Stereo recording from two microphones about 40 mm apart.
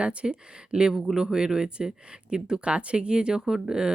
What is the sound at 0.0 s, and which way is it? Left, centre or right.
Speech, right.